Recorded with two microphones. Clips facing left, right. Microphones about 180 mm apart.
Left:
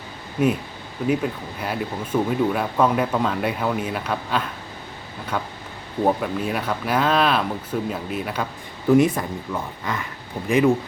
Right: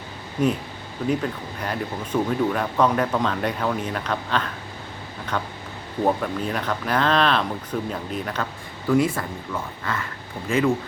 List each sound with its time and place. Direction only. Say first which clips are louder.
0.4 s speech: left 2 dB; 5° left (ahead or behind)
8.9 s speech: left 4 dB; 20° left (ahead or behind)